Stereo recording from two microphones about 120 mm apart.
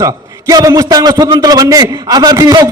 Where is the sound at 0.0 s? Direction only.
30° right (ahead or behind).